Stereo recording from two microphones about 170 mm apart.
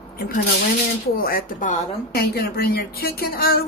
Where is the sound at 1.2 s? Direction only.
60° left (ahead or behind).